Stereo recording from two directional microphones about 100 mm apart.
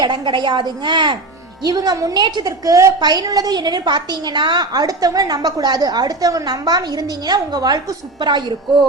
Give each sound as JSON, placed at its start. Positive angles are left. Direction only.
{"t": 0.0, "sound": "a woman's voice", "side_deg": -50}
{"t": 1.6, "sound": "a woman's voice", "side_deg": -40}